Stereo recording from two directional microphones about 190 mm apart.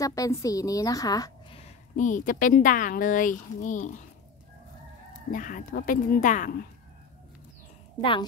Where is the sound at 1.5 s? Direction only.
40° left (ahead or behind).